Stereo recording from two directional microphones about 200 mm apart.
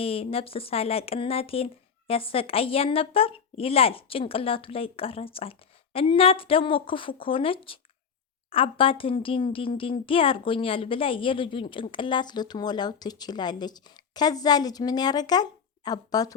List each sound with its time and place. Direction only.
0.0 s a woman's voice: 30° left (ahead or behind)